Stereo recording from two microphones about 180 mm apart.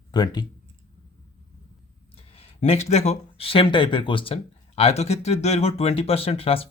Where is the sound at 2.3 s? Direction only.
35° left (ahead or behind).